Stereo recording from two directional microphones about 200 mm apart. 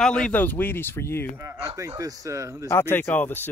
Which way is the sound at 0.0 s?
5° left (ahead or behind).